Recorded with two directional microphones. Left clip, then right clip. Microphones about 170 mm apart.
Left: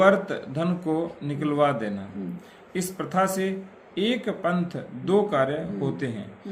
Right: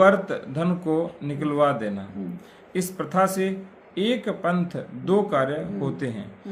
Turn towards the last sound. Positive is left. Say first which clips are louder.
# even
turn(degrees=-30)  # may be behind; listen again after turning